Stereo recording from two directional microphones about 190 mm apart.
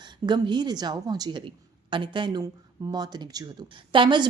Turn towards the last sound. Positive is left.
turn(degrees=-25)  # may be behind; listen again after turning